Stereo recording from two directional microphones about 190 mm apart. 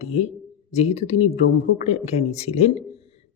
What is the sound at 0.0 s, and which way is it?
Speech, 35° left (ahead or behind).